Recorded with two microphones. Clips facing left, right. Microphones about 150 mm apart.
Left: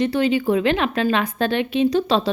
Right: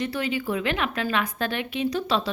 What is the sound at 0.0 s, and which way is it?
A woman's voice, 25° left (ahead or behind).